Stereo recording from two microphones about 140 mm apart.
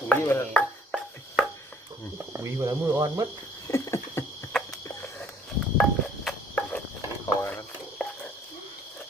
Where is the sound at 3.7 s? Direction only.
20° left (ahead or behind).